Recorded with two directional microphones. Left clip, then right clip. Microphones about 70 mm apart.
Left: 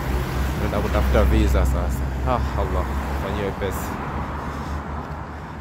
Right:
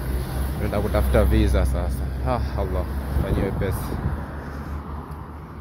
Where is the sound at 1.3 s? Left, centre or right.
Right.